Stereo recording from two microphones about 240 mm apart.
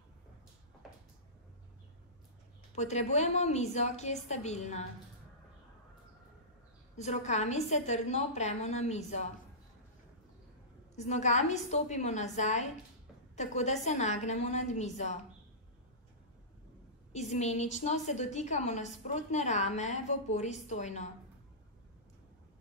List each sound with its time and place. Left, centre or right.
2.7 s a woman's voice: left
7.0 s a woman's voice: left
11.0 s a woman's voice: left
17.1 s a woman's voice: left